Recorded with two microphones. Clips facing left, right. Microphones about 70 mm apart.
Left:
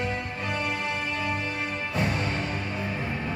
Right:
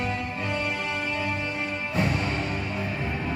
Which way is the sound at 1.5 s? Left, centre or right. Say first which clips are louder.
Right 1 dB; right.